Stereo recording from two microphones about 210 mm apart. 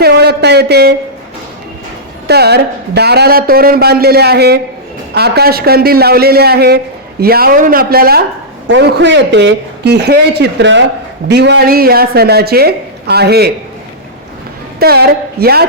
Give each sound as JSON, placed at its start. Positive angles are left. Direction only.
{"t": 0.0, "sound": "a man's voice", "side_deg": -50}
{"t": 2.2, "sound": "a man's voice", "side_deg": -50}
{"t": 8.6, "sound": "a man's voice", "side_deg": -55}
{"t": 14.8, "sound": "a man's voice", "side_deg": -50}